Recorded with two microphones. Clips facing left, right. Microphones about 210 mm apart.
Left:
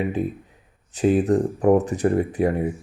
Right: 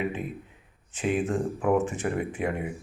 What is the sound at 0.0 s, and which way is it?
Speech, 35° left (ahead or behind).